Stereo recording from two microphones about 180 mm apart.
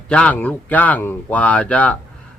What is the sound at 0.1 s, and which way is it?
Speech, 5° left (ahead or behind).